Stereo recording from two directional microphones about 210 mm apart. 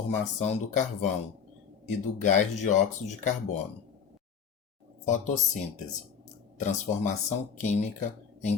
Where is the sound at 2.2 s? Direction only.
35° left (ahead or behind).